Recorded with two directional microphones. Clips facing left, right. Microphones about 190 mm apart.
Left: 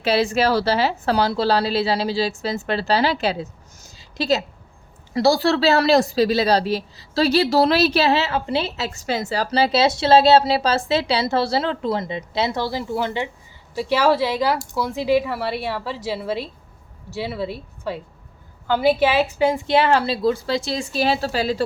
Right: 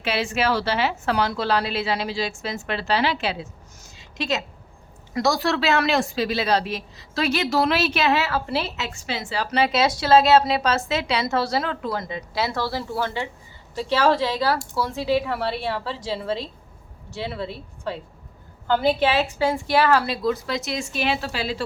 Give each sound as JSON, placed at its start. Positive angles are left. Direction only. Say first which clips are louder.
{"t": 0.0, "sound": "a woman's voice", "louder": "left 5 dB", "side_deg": 35}